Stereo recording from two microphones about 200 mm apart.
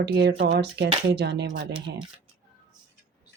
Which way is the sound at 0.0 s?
55° right (ahead or behind).